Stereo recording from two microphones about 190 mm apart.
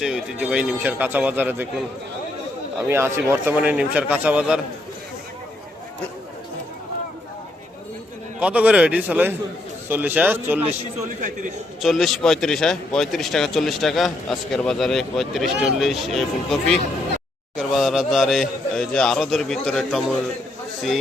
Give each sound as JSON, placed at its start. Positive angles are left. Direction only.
{"t": 0.0, "sound": "a man's voice", "side_deg": -5}
{"t": 2.9, "sound": "a man's voice", "side_deg": -15}
{"t": 8.4, "sound": "a man's voice", "side_deg": -5}
{"t": 11.1, "sound": "speech", "side_deg": -45}
{"t": 11.8, "sound": "a man's voice", "side_deg": 0}